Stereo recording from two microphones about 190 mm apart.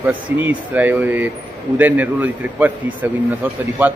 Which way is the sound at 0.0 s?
10° right (ahead or behind).